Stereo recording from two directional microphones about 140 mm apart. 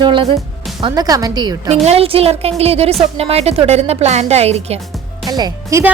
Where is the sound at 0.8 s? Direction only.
25° right (ahead or behind).